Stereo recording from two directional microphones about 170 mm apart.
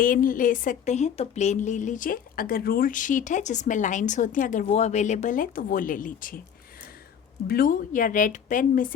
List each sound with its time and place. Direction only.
0.0 s a woman's voice: 55° left (ahead or behind)
7.4 s a woman's voice: 60° left (ahead or behind)